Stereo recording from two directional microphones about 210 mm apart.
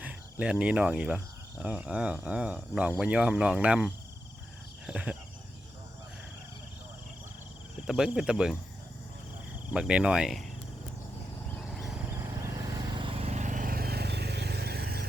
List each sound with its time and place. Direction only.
0.0 s cricket: 5° right (ahead or behind)
0.6 s speech: 5° right (ahead or behind)
4.9 s cricket: 5° right (ahead or behind)
7.9 s speech: 5° right (ahead or behind)
9.7 s speech: 5° right (ahead or behind)
13.0 s vehicle: 25° right (ahead or behind); by 15.0 s 50° right (ahead or behind)